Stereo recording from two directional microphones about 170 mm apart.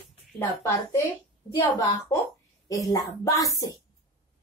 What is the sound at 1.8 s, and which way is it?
A woman's voice, 20° left (ahead or behind).